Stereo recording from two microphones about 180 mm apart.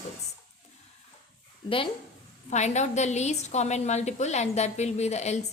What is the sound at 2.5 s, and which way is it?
A woman's voice, 40° left (ahead or behind).